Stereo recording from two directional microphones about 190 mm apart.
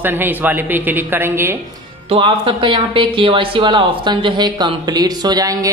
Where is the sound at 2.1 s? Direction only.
30° right (ahead or behind).